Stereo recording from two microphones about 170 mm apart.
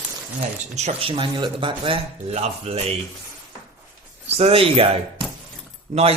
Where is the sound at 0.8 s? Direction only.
35° right (ahead or behind).